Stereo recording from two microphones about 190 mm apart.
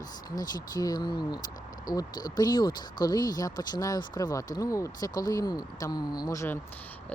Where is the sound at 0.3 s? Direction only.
20° left (ahead or behind).